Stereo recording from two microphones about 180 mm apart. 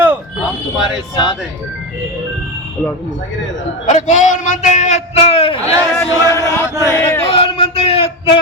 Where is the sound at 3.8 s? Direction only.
40° left (ahead or behind).